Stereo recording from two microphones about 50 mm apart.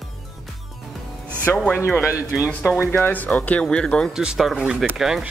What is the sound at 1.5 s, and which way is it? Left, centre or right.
Speech, left.